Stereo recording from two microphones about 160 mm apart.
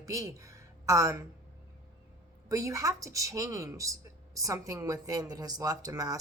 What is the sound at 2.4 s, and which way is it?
Speech, 20° right (ahead or behind).